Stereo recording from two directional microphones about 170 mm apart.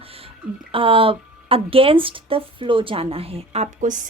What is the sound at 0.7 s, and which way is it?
Speech, 30° right (ahead or behind).